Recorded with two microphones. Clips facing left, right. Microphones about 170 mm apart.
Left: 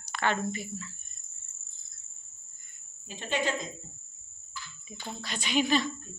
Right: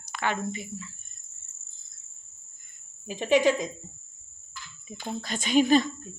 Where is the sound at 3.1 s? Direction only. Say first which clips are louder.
Right 9 dB; 85° right.